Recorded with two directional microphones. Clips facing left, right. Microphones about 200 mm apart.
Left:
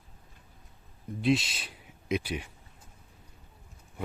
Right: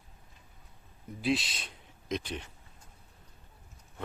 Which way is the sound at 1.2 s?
Centre (ahead or behind).